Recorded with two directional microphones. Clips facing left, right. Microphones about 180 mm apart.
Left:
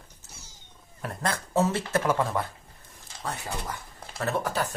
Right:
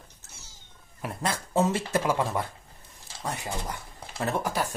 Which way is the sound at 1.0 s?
10° right (ahead or behind).